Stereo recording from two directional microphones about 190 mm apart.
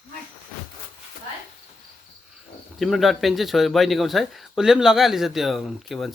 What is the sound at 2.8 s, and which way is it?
Speech, centre (ahead or behind).